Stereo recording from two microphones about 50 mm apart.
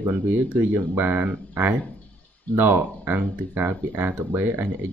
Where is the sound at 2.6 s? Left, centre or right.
Right.